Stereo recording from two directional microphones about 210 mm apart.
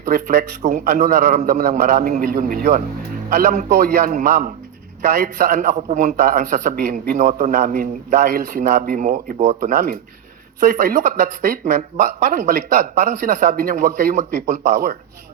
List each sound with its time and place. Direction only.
0.0 s a man's voice: 45° right (ahead or behind)